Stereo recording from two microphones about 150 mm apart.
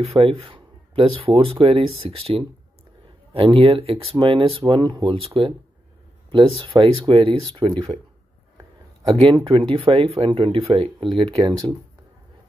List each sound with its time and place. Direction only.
0.0 s speech: 40° right (ahead or behind)
9.0 s speech: 35° right (ahead or behind)